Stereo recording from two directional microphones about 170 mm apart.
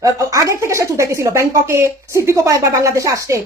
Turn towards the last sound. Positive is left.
turn(degrees=-20)  # may be behind; listen again after turning